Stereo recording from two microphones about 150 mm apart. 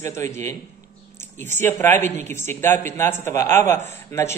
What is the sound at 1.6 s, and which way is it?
Speech, 15° left (ahead or behind).